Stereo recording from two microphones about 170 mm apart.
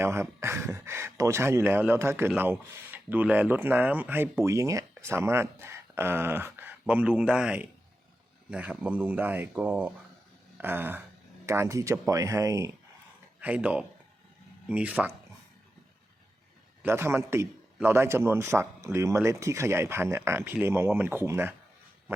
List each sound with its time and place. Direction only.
0.0 s speech: 15° right (ahead or behind)
13.4 s speech: 10° right (ahead or behind)
16.8 s speech: 15° right (ahead or behind)